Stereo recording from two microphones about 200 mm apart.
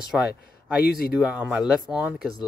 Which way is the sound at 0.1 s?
Centre (ahead or behind).